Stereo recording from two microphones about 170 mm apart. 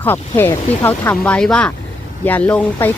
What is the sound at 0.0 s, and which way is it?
Speech, 10° left (ahead or behind).